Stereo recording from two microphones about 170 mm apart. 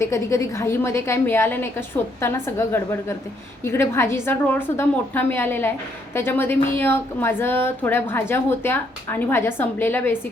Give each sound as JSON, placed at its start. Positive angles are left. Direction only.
{"t": 0.0, "sound": "a woman's voice", "side_deg": 15}